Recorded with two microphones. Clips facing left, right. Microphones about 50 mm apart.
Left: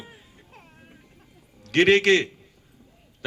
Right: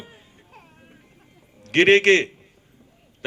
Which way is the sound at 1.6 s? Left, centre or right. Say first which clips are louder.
Right 3 dB; right.